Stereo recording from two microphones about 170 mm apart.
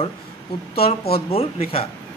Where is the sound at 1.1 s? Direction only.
35° left (ahead or behind).